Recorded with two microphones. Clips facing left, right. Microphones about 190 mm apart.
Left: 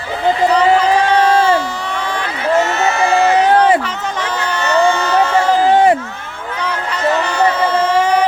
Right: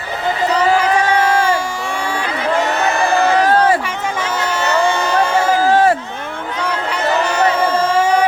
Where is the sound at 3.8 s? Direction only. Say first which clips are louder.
Even; 10° right (ahead or behind).